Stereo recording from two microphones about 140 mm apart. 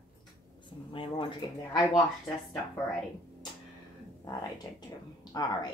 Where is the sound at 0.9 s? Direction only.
40° left (ahead or behind).